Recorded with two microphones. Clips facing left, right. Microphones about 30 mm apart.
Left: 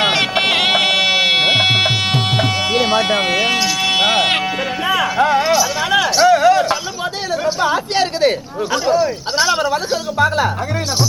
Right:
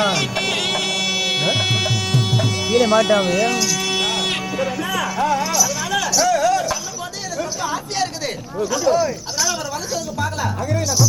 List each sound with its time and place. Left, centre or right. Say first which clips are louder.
0.0 s music: left 4 dB; left
7.4 s a sound: left 10 dB; left
9.4 s a woman's voice: left 8 dB; left